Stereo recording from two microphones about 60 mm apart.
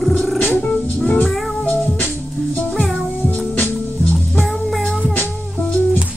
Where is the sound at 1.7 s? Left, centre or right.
Left.